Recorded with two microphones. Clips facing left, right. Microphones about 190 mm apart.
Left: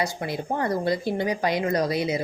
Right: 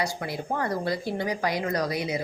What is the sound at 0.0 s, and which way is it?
A woman's voice, 20° left (ahead or behind).